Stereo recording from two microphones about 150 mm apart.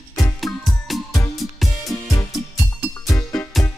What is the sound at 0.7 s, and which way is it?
Music, centre (ahead or behind).